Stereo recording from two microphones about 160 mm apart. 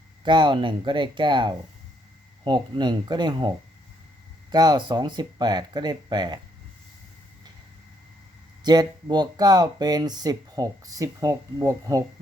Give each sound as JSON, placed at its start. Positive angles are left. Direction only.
{"t": 0.3, "sound": "speech", "side_deg": -30}
{"t": 4.5, "sound": "speech", "side_deg": -25}
{"t": 8.6, "sound": "speech", "side_deg": -25}